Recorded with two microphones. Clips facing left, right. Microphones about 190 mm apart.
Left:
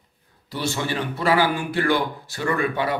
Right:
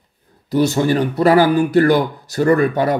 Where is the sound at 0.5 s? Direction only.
40° right (ahead or behind).